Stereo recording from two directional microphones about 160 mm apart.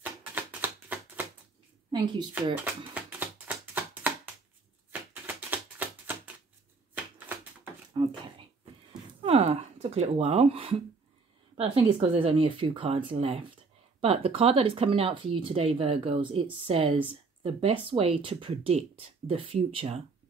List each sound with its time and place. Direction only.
0.0 s typewriter: 10° right (ahead or behind)
2.5 s typewriter: 10° right (ahead or behind)
5.1 s typewriter: 10° right (ahead or behind)
8.0 s a sound: 30° right (ahead or behind)
11.5 s speech: 40° right (ahead or behind)